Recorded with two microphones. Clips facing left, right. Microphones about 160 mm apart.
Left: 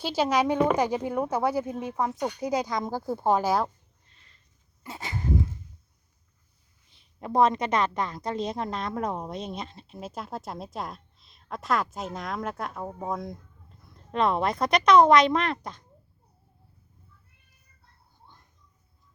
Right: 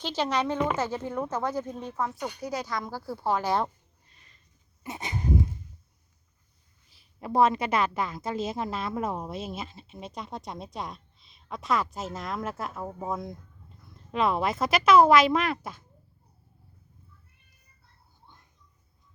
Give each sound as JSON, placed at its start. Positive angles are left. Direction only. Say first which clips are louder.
{"t": 0.0, "sound": "speech", "louder": "left 3 dB", "side_deg": 10}
{"t": 4.8, "sound": "dog", "louder": "right 1 dB", "side_deg": -20}
{"t": 6.9, "sound": "a woman's voice", "louder": "left 1 dB", "side_deg": -5}